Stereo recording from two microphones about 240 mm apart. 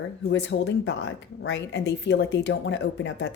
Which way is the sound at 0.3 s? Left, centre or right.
Left.